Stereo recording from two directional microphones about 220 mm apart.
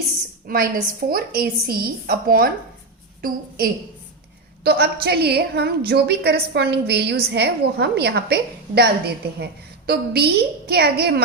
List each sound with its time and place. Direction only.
0.4 s a woman's voice: 40° right (ahead or behind)